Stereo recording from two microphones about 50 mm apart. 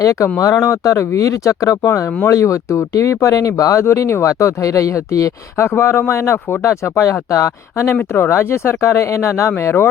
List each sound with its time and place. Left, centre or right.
0.6 s speech: left
5.6 s speech: left
8.2 s speech: left
9.6 s speech: left